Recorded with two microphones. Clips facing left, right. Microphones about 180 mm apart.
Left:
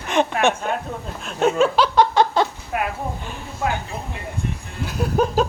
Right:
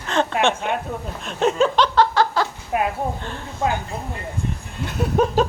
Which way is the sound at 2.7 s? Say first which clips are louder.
Right 3 dB; 20° right (ahead or behind).